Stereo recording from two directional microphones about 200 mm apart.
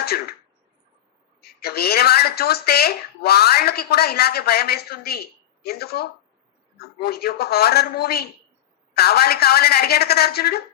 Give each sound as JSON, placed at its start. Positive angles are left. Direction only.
{"t": 1.4, "sound": "speech", "side_deg": 50}